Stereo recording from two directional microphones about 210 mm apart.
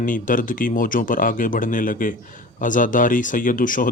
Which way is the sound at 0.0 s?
40° left (ahead or behind).